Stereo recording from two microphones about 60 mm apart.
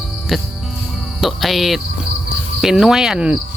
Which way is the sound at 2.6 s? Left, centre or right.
Centre.